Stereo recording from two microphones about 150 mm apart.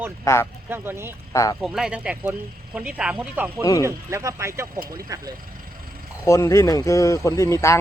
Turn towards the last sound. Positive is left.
turn(degrees=20)  # may be behind; listen again after turning